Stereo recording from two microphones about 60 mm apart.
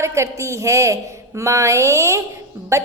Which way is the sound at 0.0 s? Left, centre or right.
Right.